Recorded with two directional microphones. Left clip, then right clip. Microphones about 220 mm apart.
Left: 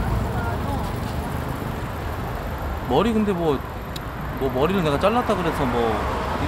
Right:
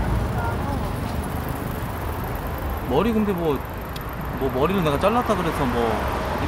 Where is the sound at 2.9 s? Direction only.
20° left (ahead or behind).